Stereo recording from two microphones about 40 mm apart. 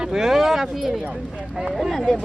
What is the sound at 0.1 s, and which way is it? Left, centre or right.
Speech, centre.